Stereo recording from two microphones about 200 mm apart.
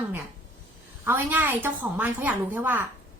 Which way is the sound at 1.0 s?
10° right (ahead or behind).